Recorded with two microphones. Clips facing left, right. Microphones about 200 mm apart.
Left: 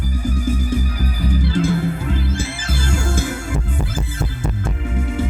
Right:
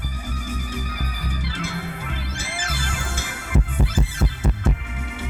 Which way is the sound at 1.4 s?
40° left (ahead or behind).